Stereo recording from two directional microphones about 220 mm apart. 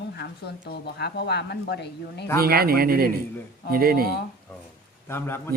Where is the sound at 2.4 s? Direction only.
45° right (ahead or behind).